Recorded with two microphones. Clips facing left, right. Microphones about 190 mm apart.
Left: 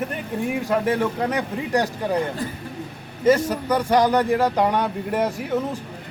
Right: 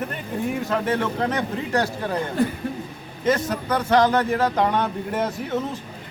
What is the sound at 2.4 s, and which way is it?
Speech, 60° right (ahead or behind).